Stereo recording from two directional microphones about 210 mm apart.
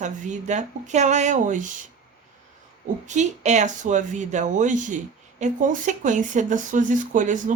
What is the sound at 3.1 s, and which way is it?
Speech, 35° right (ahead or behind).